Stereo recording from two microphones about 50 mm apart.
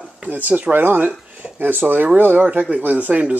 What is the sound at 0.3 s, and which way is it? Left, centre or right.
Speech, right.